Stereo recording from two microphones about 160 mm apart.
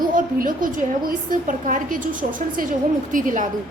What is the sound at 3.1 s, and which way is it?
Speech, 55° right (ahead or behind).